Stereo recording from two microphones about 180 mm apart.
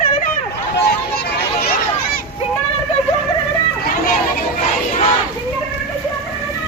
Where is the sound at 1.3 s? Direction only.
60° left (ahead or behind).